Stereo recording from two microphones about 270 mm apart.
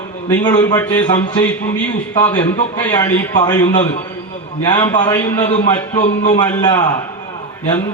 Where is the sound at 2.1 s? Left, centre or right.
Centre.